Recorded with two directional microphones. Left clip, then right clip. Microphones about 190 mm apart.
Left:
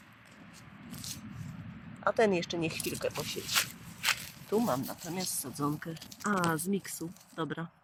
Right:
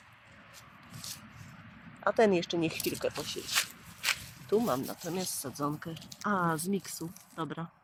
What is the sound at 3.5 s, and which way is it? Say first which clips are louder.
Walk: left 1 dB; 20° left (ahead or behind).